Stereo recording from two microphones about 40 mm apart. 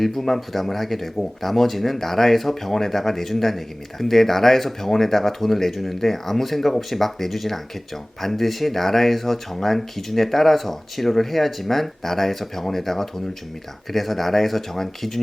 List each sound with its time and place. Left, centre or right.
0.0 s speech: centre